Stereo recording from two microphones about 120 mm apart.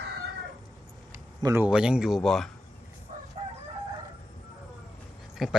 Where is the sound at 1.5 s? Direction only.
10° right (ahead or behind).